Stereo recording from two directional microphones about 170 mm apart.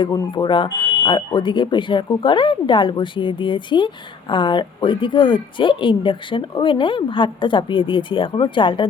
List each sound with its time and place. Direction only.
0.0 s speech: 20° left (ahead or behind)